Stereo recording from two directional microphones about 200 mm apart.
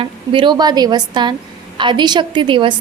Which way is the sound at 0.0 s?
25° right (ahead or behind).